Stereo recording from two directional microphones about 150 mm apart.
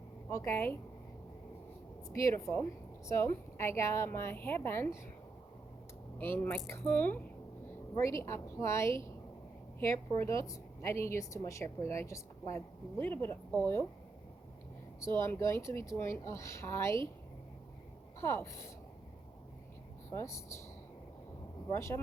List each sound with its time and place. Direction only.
0.3 s a woman's voice: 20° left (ahead or behind)
2.1 s a woman's voice: 20° left (ahead or behind)
6.1 s a woman's voice: 15° left (ahead or behind)
15.2 s a woman's voice: 15° left (ahead or behind)
18.2 s a woman's voice: 15° left (ahead or behind)
20.1 s a woman's voice: 20° left (ahead or behind)
21.7 s a woman's voice: 20° left (ahead or behind)